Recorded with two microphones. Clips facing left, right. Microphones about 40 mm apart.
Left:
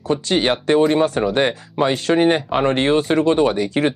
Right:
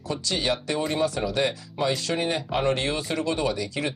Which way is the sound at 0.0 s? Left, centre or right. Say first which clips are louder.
Left 9 dB; left.